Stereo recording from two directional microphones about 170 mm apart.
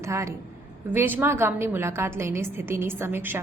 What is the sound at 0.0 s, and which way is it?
A woman's voice, 15° right (ahead or behind).